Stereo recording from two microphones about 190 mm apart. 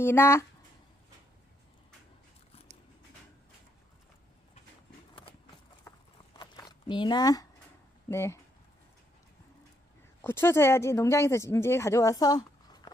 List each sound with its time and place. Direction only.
0.0 s speech: 10° left (ahead or behind)
6.4 s zipper: 20° left (ahead or behind)
8.1 s speech: 15° left (ahead or behind)
10.2 s speech: 10° left (ahead or behind)